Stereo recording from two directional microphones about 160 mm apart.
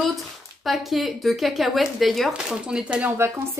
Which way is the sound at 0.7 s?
Centre (ahead or behind).